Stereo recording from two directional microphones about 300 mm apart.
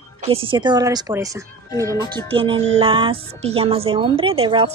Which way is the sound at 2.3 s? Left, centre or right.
Centre.